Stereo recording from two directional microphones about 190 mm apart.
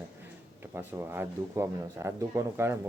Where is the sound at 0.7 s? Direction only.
10° right (ahead or behind).